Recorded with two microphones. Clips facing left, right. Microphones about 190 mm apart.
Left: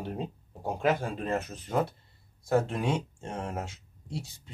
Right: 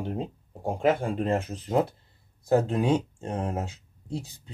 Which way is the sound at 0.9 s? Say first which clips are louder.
Right 5 dB; 25° right (ahead or behind).